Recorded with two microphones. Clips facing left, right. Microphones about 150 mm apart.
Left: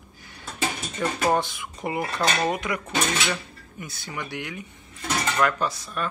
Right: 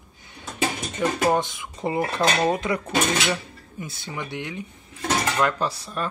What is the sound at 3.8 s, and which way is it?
Speech, 25° right (ahead or behind).